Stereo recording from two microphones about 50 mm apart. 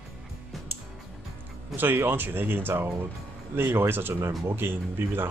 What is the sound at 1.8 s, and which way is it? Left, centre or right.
Speech, right.